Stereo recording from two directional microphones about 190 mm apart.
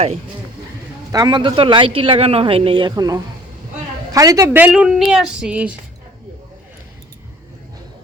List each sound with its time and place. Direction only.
1.1 s a man's voice: 20° right (ahead or behind); by 5.7 s 5° right (ahead or behind)